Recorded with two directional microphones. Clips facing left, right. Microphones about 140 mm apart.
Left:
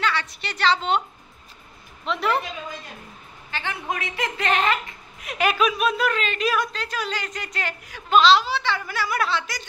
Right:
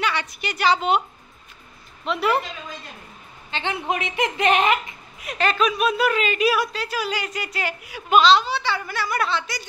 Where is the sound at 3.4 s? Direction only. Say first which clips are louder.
Right 4 dB; 20° right (ahead or behind).